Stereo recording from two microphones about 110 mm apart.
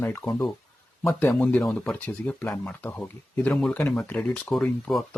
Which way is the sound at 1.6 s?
Centre (ahead or behind).